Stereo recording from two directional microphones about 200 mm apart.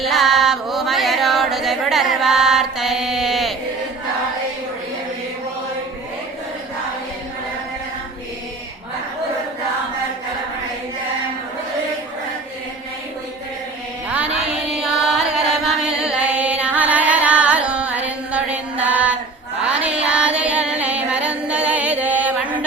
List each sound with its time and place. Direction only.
0.0 s music: centre (ahead or behind)
14.8 s chant: centre (ahead or behind)
18.8 s female singing: 5° right (ahead or behind)
19.6 s music: 5° right (ahead or behind)